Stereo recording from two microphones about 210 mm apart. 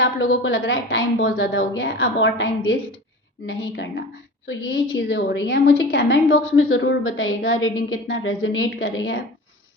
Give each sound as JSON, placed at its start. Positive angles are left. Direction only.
{"t": 0.0, "sound": "a woman's voice", "side_deg": 65}